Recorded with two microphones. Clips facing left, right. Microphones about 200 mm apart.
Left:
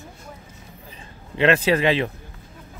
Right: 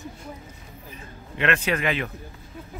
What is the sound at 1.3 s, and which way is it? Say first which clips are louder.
Speech: left 6 dB; 30° left (ahead or behind).